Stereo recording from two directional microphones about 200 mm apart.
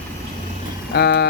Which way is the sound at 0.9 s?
50° left (ahead or behind).